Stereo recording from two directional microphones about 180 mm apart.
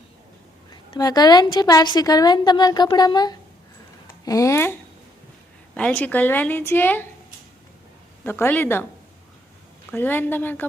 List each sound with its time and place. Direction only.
0.7 s a woman's voice: 20° left (ahead or behind)
8.2 s a woman's voice: 10° left (ahead or behind)
9.9 s a woman's voice: 10° left (ahead or behind)